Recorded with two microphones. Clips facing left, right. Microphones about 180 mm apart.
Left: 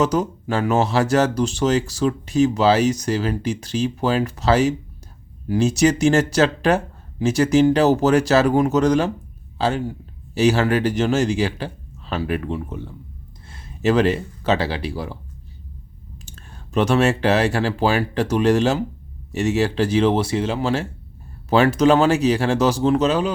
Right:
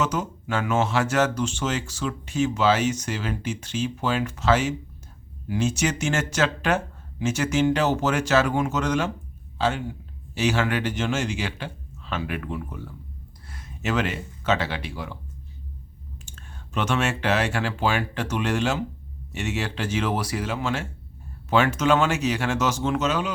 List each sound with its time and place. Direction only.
0.0 s a man's voice: 35° left (ahead or behind)
16.2 s speech: 35° left (ahead or behind)